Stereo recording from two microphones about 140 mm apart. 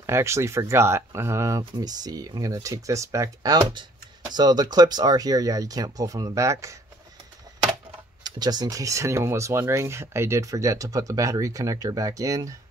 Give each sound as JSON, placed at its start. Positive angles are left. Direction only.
{"t": 0.0, "sound": "speech", "side_deg": -20}
{"t": 8.2, "sound": "speech", "side_deg": -30}